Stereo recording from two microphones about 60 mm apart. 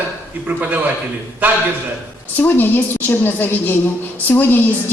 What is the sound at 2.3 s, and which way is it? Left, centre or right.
A woman's voice, left.